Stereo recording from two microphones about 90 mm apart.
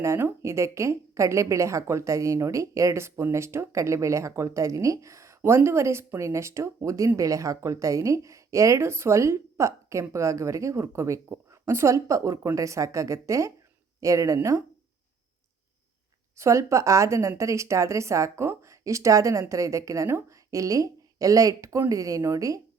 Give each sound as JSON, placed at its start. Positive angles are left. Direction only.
{"t": 0.0, "sound": "a woman's voice", "side_deg": -30}
{"t": 16.4, "sound": "a woman's voice", "side_deg": -35}